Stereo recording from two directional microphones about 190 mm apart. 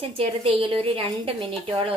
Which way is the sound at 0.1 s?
30° right (ahead or behind).